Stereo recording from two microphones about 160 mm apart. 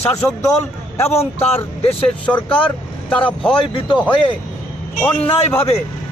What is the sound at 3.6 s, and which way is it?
Speech, 30° left (ahead or behind).